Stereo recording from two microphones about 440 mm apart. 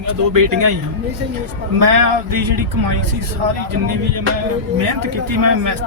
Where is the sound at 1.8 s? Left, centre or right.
Right.